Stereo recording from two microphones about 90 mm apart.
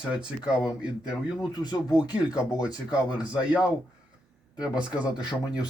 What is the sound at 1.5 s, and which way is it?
Speech, 50° left (ahead or behind).